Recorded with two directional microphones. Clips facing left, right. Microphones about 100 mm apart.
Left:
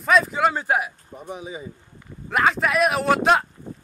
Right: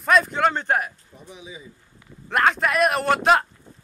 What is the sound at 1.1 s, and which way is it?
Speech, 50° left (ahead or behind).